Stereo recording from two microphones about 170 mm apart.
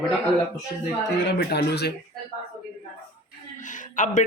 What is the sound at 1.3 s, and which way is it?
Speech, 75° left (ahead or behind).